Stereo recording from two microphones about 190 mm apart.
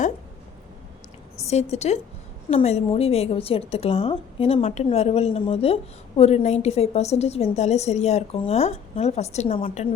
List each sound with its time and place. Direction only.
1.4 s a woman's voice: 35° left (ahead or behind)